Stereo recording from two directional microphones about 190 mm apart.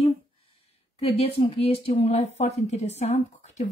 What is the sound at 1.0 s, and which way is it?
Speech, 30° left (ahead or behind).